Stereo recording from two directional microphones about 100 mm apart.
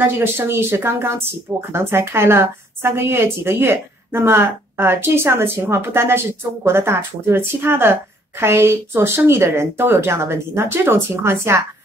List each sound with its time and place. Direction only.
0.0 s a woman's voice: 25° right (ahead or behind)